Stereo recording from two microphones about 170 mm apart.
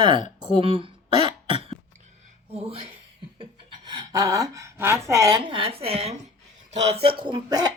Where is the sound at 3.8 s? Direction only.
25° right (ahead or behind).